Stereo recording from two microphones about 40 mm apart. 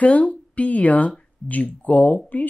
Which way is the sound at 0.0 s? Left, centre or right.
Left.